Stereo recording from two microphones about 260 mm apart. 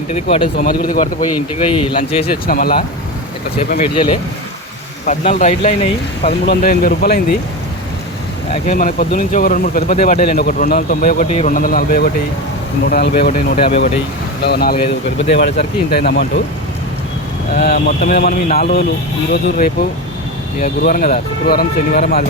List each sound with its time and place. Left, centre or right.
0.1 s speech: left
0.6 s speech: left
1.5 s speech: centre
2.2 s speech: left
3.7 s speech: left
6.5 s speech: left
8.6 s speech: left
13.6 s speech: left
14.4 s speech: left
17.5 s speech: left